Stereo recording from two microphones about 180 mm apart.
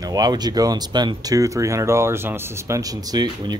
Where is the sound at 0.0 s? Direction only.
20° right (ahead or behind).